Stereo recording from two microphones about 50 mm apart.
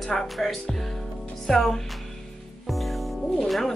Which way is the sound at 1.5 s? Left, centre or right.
Centre.